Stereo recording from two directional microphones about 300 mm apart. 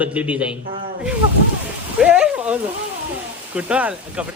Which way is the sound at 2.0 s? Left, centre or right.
Centre.